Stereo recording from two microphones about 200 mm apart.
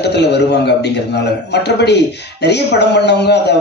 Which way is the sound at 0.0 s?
55° left (ahead or behind).